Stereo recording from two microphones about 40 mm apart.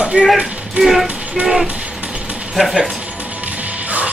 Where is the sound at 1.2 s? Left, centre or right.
Right.